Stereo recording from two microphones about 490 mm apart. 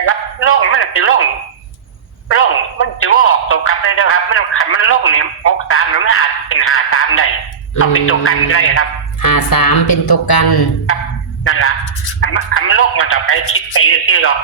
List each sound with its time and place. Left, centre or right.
0.1 s music: left
2.3 s a sound: left
7.8 s a man's voice: left
9.2 s speech: left
11.4 s a sound: left
12.2 s a man's voice: left